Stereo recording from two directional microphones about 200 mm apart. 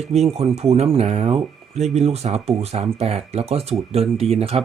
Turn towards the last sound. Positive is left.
turn(degrees=-30)  # may be behind; listen again after turning